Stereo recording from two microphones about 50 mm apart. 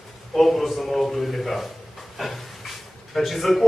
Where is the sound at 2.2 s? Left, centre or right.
Centre.